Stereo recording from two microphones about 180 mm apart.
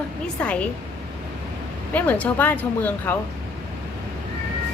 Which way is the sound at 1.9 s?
10° left (ahead or behind).